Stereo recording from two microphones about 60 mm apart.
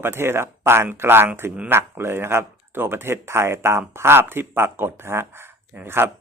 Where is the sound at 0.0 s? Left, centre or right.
Right.